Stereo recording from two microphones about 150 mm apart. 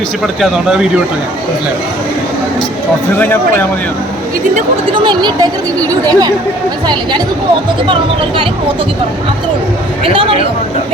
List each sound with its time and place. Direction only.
0.3 s speech: 5° right (ahead or behind)
5.0 s speech: 30° right (ahead or behind)
10.0 s speech: 40° right (ahead or behind)